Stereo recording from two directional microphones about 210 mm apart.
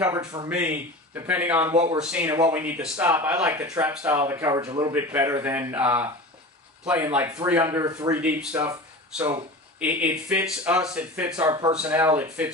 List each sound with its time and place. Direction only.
0.0 s speech: 10° right (ahead or behind)
11.3 s speech: 15° right (ahead or behind)